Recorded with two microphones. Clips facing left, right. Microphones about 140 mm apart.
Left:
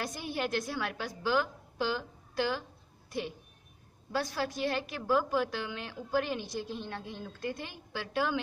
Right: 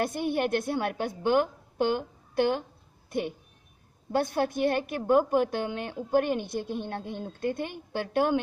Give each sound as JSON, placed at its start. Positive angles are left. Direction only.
{"t": 0.0, "sound": "a woman's voice", "side_deg": -60}